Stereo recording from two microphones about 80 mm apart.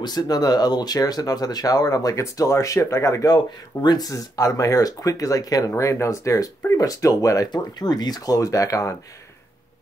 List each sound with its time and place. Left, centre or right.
0.0 s speech: left
3.3 s speech: left
4.1 s speech: left
5.7 s speech: left
7.5 s speech: left